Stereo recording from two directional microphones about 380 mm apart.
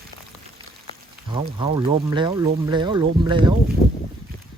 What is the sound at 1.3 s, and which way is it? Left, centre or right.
Speech, centre.